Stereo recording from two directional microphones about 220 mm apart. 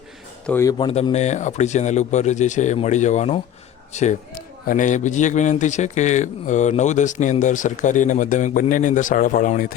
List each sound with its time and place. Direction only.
0.4 s a man's voice: 10° left (ahead or behind); by 9.7 s 35° left (ahead or behind)